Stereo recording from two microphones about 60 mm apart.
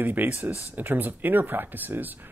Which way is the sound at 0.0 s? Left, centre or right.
Right.